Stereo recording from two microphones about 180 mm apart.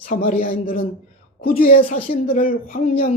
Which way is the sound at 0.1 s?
55° left (ahead or behind).